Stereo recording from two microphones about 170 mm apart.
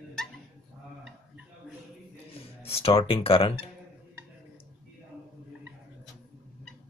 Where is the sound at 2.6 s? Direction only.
35° left (ahead or behind).